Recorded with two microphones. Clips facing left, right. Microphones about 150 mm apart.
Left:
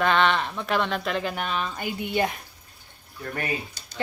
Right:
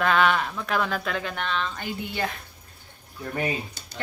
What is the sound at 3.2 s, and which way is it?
Speech, 15° right (ahead or behind).